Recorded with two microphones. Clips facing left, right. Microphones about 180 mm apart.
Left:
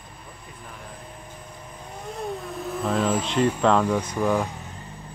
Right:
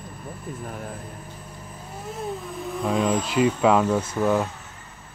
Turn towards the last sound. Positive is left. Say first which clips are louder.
# right 1 dB
turn(degrees=15)  # may be behind; listen again after turning